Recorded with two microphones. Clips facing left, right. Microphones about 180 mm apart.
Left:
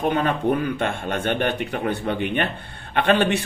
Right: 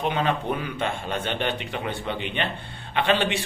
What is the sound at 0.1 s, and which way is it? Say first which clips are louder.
Speech: left 4 dB; 50° left (ahead or behind).